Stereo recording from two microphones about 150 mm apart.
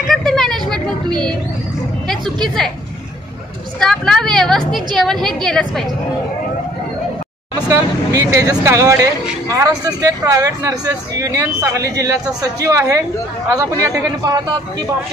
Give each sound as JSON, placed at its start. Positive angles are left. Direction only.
{"t": 0.1, "sound": "a sound", "side_deg": 0}
{"t": 2.2, "sound": "a woman's voice", "side_deg": -30}
{"t": 3.8, "sound": "a woman's voice", "side_deg": 5}
{"t": 7.6, "sound": "speech", "side_deg": -20}